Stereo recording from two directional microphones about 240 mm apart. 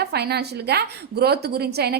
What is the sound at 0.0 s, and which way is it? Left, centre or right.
A woman's voice, right.